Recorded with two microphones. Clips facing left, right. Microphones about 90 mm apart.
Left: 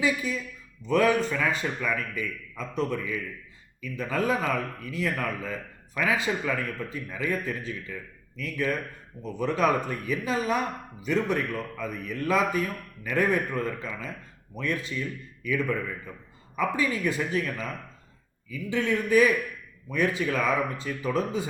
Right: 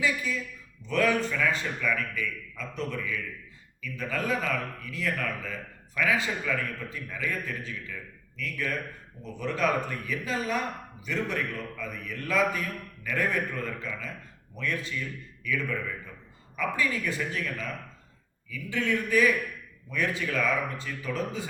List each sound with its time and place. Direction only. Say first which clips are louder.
0.0 s a man's voice: left 2 dB; 20° left (ahead or behind)
18.7 s a man's voice: left 3 dB; 20° left (ahead or behind)